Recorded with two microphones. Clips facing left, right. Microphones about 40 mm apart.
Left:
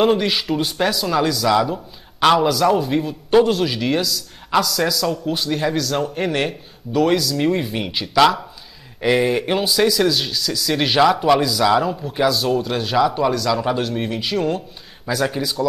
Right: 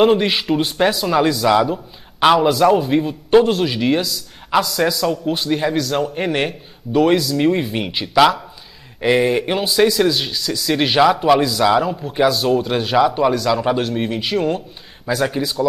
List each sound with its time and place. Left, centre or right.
0.0 s speech: centre